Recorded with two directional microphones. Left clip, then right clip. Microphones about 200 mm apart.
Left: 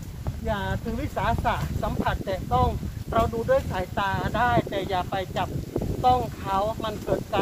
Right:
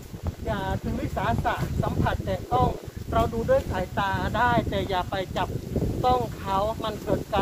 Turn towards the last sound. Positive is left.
turn(degrees=-30)  # may be behind; listen again after turning